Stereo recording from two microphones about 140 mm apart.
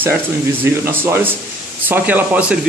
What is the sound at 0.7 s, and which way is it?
Speech, 15° right (ahead or behind).